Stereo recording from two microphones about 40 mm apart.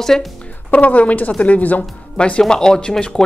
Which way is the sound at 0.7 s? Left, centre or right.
Left.